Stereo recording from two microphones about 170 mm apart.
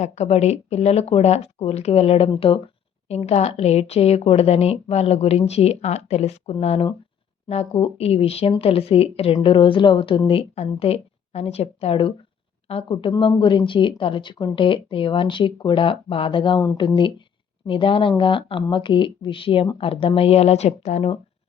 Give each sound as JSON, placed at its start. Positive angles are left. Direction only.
{"t": 0.0, "sound": "speech", "side_deg": 40}